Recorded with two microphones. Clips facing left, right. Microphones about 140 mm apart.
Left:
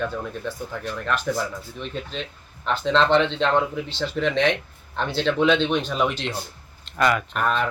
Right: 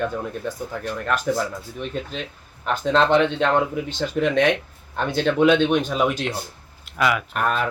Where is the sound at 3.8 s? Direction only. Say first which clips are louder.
Right 2 dB; 45° right (ahead or behind).